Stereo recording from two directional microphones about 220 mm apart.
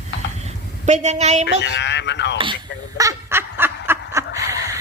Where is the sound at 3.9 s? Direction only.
15° right (ahead or behind).